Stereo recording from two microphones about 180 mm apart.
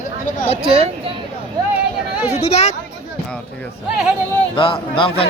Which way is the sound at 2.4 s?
35° left (ahead or behind).